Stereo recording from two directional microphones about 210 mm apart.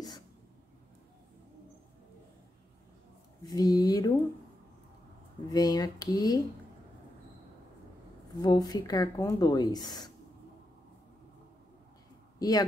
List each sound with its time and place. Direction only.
3.4 s speech: 20° left (ahead or behind)
5.5 s speech: 20° left (ahead or behind)
8.4 s speech: 20° left (ahead or behind)
12.4 s speech: 20° left (ahead or behind)